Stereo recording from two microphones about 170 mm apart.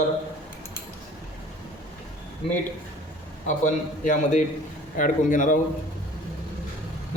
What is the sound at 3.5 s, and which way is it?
A man's voice, 45° left (ahead or behind).